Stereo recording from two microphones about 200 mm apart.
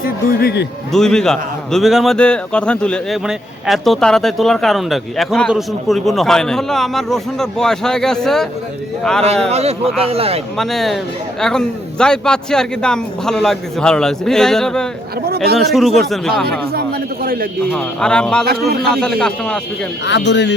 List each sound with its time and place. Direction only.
0.0 s a man's voice: 50° left (ahead or behind)
0.9 s speech: 5° left (ahead or behind)
9.5 s a man's voice: 30° right (ahead or behind)
10.6 s speech: centre (ahead or behind)
17.2 s a man's voice: 45° right (ahead or behind)
17.7 s speech: 5° left (ahead or behind)
20.1 s speech: 60° left (ahead or behind)